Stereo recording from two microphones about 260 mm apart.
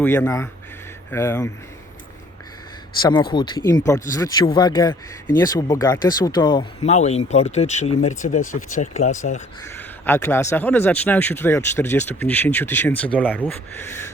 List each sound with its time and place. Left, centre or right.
0.0 s speech: centre
3.0 s speech: centre
9.7 s speech: centre